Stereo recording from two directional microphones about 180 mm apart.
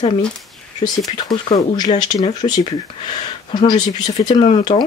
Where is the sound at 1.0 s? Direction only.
25° left (ahead or behind).